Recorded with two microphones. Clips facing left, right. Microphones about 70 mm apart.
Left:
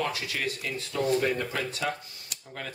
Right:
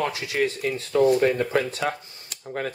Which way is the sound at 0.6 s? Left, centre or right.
Right.